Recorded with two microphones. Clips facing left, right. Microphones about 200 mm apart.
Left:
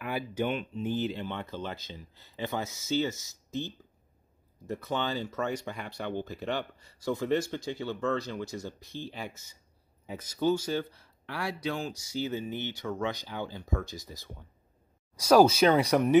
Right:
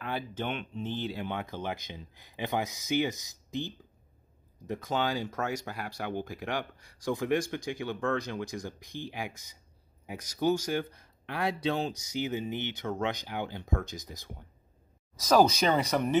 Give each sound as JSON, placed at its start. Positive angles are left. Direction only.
{"t": 0.0, "sound": "speech", "side_deg": 10}
{"t": 1.2, "sound": "speech", "side_deg": -15}
{"t": 5.1, "sound": "speech", "side_deg": -10}
{"t": 15.1, "sound": "speech", "side_deg": 10}